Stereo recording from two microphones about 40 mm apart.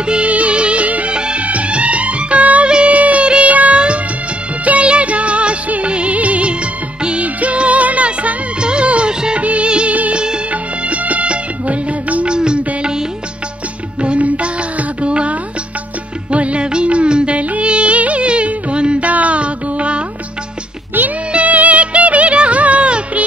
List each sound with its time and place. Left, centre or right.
0.0 s music of bollywood: right
1.1 s music: right
1.4 s music: right
7.0 s music: right
9.4 s music of bollywood: right
10.5 s music: right
12.4 s music: right
14.0 s music: right
19.0 s music: right
21.3 s music: right